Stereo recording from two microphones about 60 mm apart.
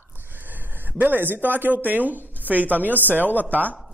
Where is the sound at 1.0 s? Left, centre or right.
Right.